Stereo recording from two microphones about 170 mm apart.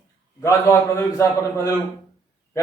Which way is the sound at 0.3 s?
15° left (ahead or behind).